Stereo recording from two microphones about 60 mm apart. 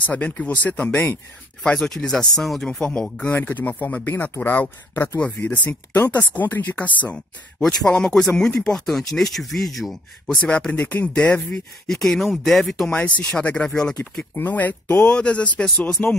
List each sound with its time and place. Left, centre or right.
0.0 s speech: left
1.6 s speech: centre
3.0 s speech: centre
3.3 s speech: left
7.6 s speech: centre
10.7 s speech: left
11.5 s speech: centre
12.9 s speech: left
13.2 s speech: centre
13.5 s speech: left
13.7 s speech: centre
14.3 s speech: left